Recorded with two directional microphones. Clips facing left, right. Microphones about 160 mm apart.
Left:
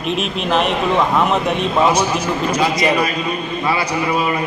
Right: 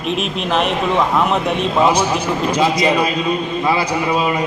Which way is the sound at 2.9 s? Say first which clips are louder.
Right 2 dB; 20° right (ahead or behind).